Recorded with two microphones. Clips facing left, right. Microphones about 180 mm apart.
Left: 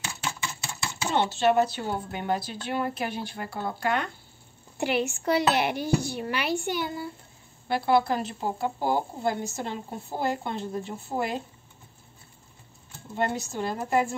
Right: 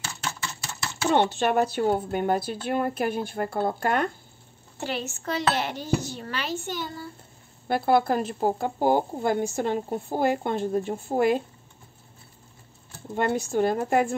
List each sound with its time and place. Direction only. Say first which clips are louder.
0.0 s a sound: even; 10° left (ahead or behind)
1.1 s speech: even; 50° right (ahead or behind)
4.7 s speech: left 5 dB; 15° left (ahead or behind)
7.6 s speech: right 2 dB; 50° right (ahead or behind)
13.1 s speech: right 4 dB; 50° right (ahead or behind)